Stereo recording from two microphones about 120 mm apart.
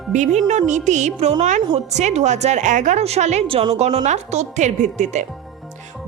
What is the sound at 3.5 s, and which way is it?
A woman's voice, 50° right (ahead or behind).